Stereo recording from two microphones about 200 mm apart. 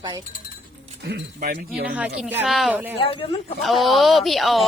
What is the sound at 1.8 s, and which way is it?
Speech, 5° right (ahead or behind).